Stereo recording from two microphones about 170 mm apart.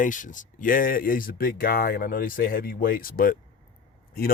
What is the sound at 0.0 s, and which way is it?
Speech, 50° left (ahead or behind).